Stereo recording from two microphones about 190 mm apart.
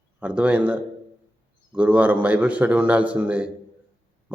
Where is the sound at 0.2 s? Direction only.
5° right (ahead or behind).